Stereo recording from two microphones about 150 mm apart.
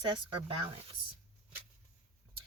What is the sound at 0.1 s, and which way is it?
Speech, 35° right (ahead or behind).